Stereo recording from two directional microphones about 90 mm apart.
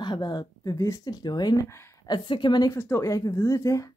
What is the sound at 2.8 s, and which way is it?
A woman's voice, 30° left (ahead or behind).